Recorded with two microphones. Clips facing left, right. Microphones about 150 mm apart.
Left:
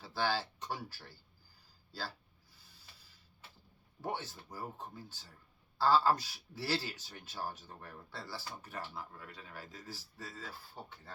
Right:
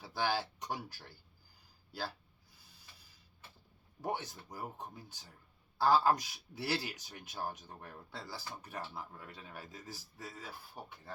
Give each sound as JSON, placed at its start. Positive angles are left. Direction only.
{"t": 0.0, "sound": "speech", "side_deg": -15}
{"t": 4.0, "sound": "speech", "side_deg": -15}